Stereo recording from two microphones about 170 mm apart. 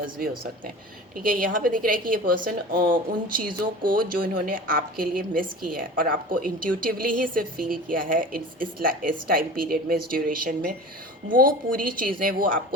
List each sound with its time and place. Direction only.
1.2 s a woman's voice: 55° right (ahead or behind)